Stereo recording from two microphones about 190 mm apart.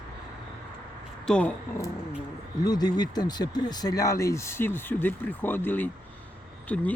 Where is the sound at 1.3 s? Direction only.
5° left (ahead or behind).